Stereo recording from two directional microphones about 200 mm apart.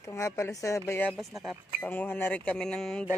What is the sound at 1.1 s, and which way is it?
Speech, centre (ahead or behind).